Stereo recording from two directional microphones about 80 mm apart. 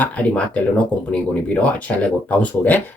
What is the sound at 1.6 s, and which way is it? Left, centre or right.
Speech, centre.